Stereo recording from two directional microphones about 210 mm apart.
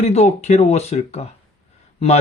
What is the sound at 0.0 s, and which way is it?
Speech, 30° left (ahead or behind).